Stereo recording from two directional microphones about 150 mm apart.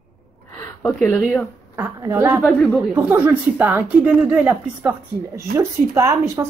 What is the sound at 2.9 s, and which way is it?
A woman's voice, 10° right (ahead or behind).